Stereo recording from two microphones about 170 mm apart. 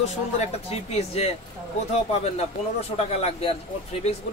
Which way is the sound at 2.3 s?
40° left (ahead or behind).